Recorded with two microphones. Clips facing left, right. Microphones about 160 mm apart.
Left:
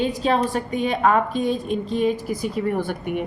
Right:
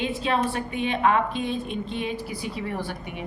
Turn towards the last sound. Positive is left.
turn(degrees=50)  # may be behind; listen again after turning